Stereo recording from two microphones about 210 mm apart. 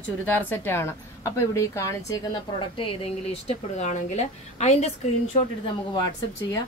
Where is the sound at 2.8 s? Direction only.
25° left (ahead or behind).